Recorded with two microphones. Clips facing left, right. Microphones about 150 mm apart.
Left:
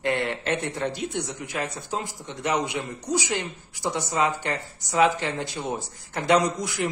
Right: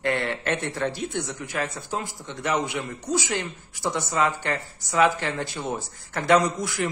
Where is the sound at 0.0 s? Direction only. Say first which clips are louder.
Even; 15° left (ahead or behind).